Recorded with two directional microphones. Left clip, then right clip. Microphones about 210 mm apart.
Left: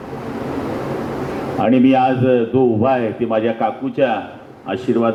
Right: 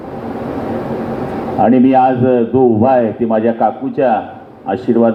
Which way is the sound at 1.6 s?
20° right (ahead or behind).